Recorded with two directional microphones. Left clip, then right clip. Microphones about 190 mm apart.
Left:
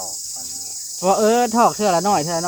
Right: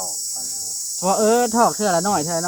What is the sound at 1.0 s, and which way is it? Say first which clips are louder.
Speech: left 1 dB; 55° left (ahead or behind).